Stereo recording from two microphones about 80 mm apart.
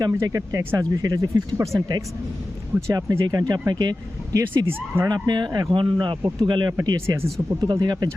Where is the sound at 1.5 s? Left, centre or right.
Right.